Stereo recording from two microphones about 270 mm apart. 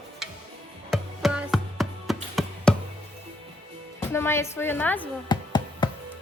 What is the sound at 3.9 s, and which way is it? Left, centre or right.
A woman's voice, centre.